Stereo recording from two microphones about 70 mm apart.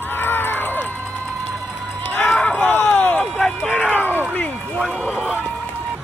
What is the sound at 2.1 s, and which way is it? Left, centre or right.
Run, left.